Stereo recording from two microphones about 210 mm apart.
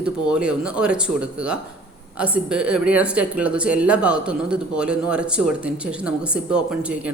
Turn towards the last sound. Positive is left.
turn(degrees=-5)  # may be behind; listen again after turning